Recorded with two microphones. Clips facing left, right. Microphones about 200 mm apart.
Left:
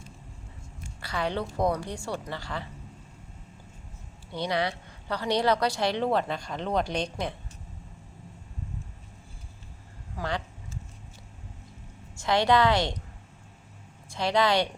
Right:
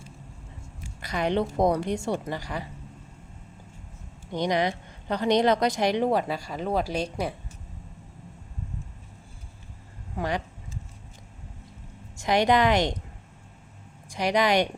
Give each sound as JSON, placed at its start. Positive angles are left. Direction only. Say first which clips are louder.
{"t": 1.0, "sound": "a woman's voice", "louder": "right 5 dB", "side_deg": -20}
{"t": 4.4, "sound": "a woman's voice", "louder": "right 4 dB", "side_deg": -15}
{"t": 12.2, "sound": "a woman's voice", "louder": "right 1 dB", "side_deg": -15}
{"t": 14.1, "sound": "a woman's voice", "louder": "right 1 dB", "side_deg": -15}